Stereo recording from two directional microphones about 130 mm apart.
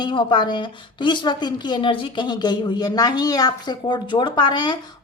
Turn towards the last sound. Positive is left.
turn(degrees=35)  # may be behind; listen again after turning